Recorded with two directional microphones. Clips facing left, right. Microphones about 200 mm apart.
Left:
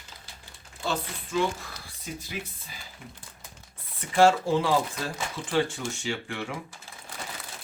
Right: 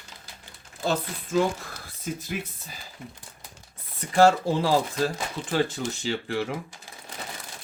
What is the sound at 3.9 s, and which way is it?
Speech, 40° right (ahead or behind).